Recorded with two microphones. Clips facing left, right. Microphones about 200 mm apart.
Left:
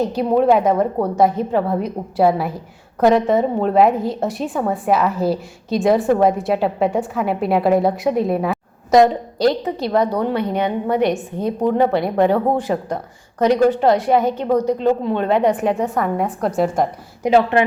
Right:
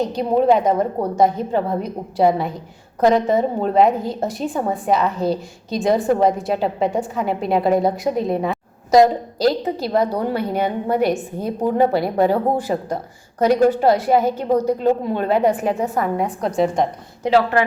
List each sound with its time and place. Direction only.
0.0 s a woman's voice: 5° left (ahead or behind)
17.2 s speech: 20° left (ahead or behind)